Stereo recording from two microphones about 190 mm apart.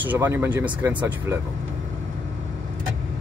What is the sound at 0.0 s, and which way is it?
Speech, 10° right (ahead or behind).